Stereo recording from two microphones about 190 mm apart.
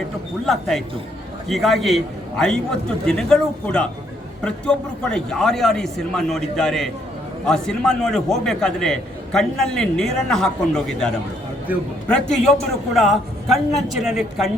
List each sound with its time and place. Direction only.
0.4 s a man's voice: centre (ahead or behind)
11.7 s a man's voice: 10° right (ahead or behind)
12.0 s a man's voice: 5° left (ahead or behind)